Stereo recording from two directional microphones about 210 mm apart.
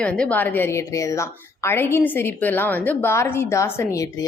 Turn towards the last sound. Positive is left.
turn(degrees=15)  # may be behind; listen again after turning